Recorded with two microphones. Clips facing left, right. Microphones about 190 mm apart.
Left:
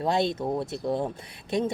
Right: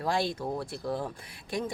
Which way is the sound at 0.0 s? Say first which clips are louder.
Left 4 dB; 20° left (ahead or behind).